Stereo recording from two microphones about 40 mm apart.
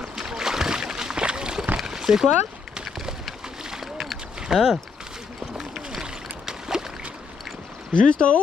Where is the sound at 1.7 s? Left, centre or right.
Centre.